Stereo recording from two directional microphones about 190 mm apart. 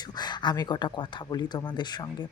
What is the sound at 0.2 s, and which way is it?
Speech, 20° left (ahead or behind).